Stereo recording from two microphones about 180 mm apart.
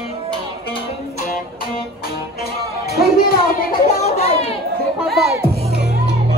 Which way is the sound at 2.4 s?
60° left (ahead or behind).